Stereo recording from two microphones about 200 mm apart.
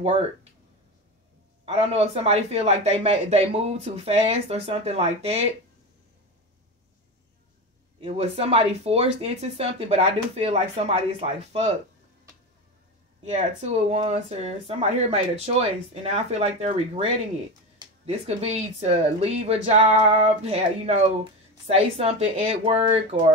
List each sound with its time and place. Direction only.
0.0 s speech: 30° right (ahead or behind)
1.7 s speech: 30° right (ahead or behind)
8.0 s speech: 30° right (ahead or behind)
13.2 s speech: 35° right (ahead or behind)